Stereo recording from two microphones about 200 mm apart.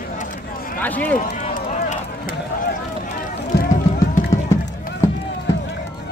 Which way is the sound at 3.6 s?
40° left (ahead or behind).